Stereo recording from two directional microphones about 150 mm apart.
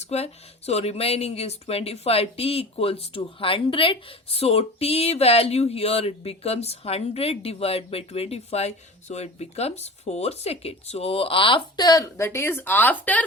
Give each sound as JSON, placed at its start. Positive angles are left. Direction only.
{"t": 0.0, "sound": "speech", "side_deg": 45}